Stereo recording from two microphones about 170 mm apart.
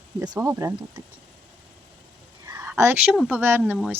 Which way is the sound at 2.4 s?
15° right (ahead or behind).